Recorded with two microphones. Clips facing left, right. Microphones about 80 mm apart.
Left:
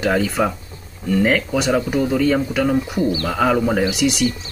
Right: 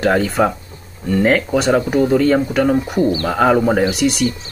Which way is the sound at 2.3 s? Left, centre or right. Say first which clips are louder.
Right 3 dB; right.